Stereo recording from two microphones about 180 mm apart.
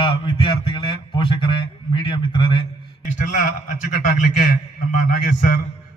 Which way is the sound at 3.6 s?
45° left (ahead or behind).